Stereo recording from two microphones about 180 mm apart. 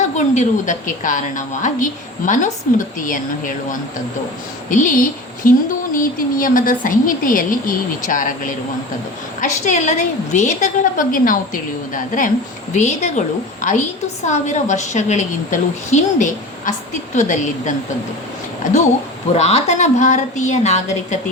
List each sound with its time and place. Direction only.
0.3 s a woman's voice: 45° left (ahead or behind)
19.3 s a woman's voice: 35° left (ahead or behind)